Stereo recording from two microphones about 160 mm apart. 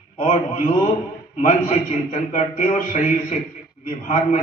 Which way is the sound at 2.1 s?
50° left (ahead or behind).